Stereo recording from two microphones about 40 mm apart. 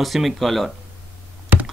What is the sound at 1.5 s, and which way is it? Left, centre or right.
Computer keyboard, right.